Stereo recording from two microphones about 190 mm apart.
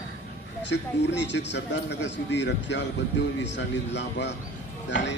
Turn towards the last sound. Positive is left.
turn(degrees=70)  # may be behind; listen again after turning